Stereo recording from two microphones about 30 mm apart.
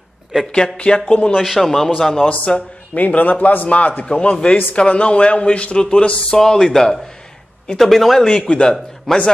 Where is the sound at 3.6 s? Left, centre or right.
Left.